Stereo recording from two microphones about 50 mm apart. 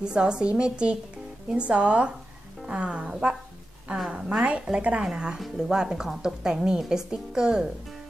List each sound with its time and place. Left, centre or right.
0.0 s speech: centre
4.4 s speech: right